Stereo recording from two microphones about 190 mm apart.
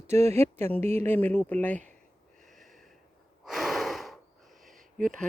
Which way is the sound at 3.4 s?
Centre (ahead or behind).